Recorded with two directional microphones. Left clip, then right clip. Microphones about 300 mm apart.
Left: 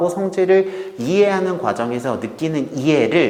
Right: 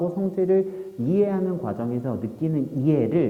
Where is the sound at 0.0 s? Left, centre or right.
Centre.